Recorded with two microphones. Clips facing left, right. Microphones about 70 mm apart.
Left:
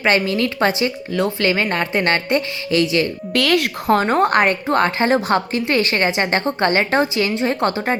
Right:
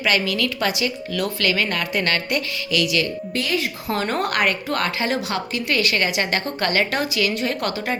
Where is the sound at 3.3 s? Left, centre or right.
Left.